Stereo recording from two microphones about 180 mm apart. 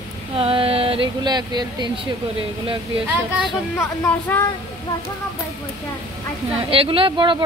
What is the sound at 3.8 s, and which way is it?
Speech, 10° left (ahead or behind).